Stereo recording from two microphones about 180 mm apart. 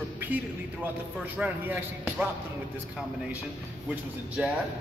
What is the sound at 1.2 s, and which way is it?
Speech, 10° right (ahead or behind).